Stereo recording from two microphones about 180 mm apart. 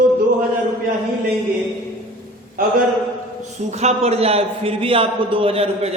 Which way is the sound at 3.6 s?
40° right (ahead or behind).